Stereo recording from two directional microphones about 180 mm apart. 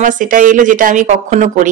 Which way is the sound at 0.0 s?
50° right (ahead or behind).